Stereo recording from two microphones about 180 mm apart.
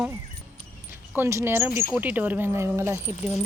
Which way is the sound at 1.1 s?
15° right (ahead or behind).